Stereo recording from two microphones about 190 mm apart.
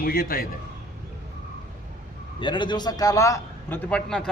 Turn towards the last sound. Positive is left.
turn(degrees=5)  # may be behind; listen again after turning